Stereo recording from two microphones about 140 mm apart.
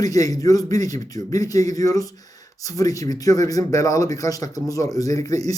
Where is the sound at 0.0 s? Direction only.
25° left (ahead or behind).